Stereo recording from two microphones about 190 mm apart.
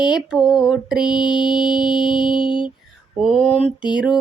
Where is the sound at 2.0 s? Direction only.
25° left (ahead or behind).